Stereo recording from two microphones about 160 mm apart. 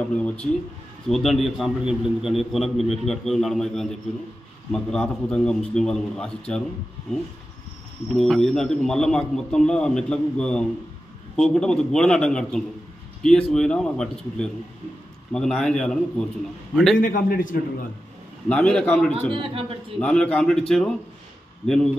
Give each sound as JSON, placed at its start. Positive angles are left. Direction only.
{"t": 0.1, "sound": "a man's voice", "side_deg": 5}
{"t": 8.2, "sound": "a man's voice", "side_deg": 0}
{"t": 17.0, "sound": "a man's voice", "side_deg": 60}
{"t": 18.5, "sound": "a man's voice", "side_deg": 5}
{"t": 19.3, "sound": "speech", "side_deg": -35}
{"t": 20.0, "sound": "a man's voice", "side_deg": 5}